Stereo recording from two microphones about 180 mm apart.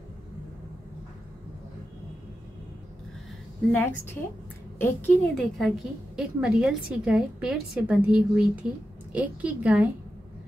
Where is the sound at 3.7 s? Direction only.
10° left (ahead or behind).